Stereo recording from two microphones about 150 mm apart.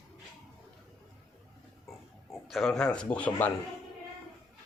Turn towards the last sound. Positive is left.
turn(degrees=10)  # may be behind; listen again after turning